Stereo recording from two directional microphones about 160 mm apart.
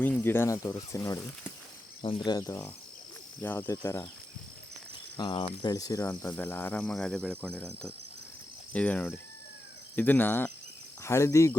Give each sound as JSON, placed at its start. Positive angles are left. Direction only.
{"t": 0.0, "sound": "speech", "side_deg": 10}
{"t": 2.0, "sound": "speech", "side_deg": 30}
{"t": 5.1, "sound": "speech", "side_deg": 30}